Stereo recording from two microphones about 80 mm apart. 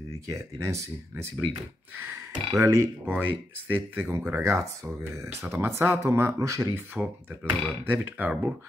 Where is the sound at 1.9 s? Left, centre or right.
Right.